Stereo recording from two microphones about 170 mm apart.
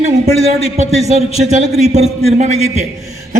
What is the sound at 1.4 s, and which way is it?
A man's voice, 40° right (ahead or behind).